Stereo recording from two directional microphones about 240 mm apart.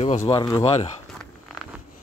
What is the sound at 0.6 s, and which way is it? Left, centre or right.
Speech, left.